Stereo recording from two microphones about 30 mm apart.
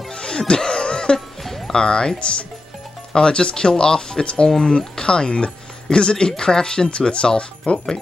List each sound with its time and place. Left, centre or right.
0.1 s music: left
1.7 s speech: left